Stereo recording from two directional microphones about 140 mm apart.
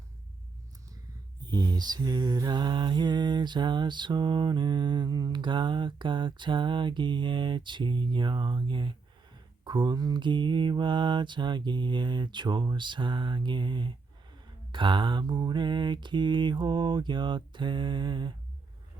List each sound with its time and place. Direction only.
1.5 s mantra: 30° right (ahead or behind)